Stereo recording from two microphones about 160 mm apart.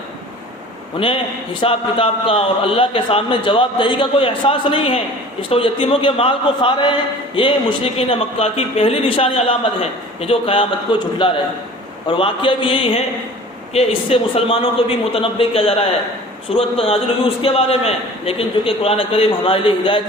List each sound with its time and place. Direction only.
0.9 s a man's voice: 35° left (ahead or behind)